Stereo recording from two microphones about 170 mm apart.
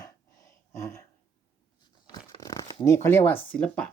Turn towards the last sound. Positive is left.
turn(degrees=5)  # may be behind; listen again after turning